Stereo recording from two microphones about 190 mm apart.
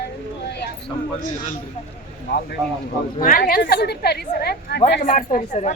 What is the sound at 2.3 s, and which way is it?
A woman's voice, 55° left (ahead or behind).